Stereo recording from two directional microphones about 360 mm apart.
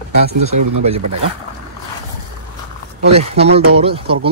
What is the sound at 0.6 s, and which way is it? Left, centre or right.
Speech, right.